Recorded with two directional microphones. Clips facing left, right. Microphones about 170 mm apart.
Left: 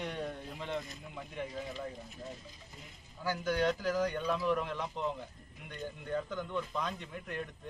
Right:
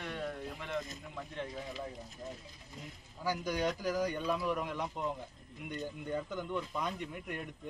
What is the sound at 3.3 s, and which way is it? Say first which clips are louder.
Speech: left 2 dB; 10° right (ahead or behind).